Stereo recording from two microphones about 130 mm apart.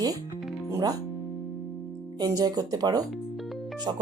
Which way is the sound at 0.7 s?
30° right (ahead or behind).